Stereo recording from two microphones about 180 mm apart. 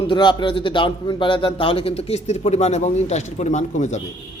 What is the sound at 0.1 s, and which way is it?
A man's voice, 25° left (ahead or behind).